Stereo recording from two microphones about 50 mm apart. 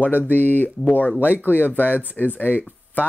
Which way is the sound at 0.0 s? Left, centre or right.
Left.